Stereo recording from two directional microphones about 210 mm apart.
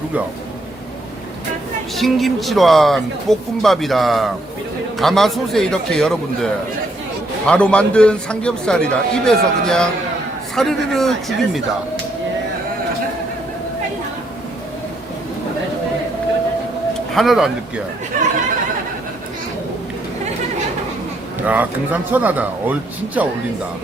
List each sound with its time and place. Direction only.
2.0 s a man's voice: centre (ahead or behind)
17.2 s a man's voice: centre (ahead or behind)
18.1 s speech: 35° right (ahead or behind)
21.4 s speech: 5° right (ahead or behind)